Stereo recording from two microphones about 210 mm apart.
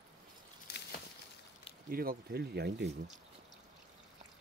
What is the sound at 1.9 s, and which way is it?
Speech, 45° right (ahead or behind).